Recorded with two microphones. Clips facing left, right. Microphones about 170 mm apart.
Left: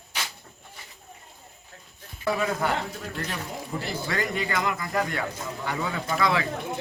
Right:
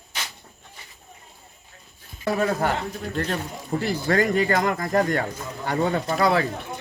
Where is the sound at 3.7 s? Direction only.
45° right (ahead or behind).